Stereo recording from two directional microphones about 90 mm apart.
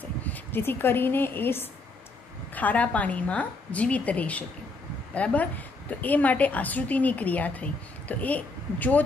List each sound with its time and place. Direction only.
0.2 s a woman's voice: 20° left (ahead or behind)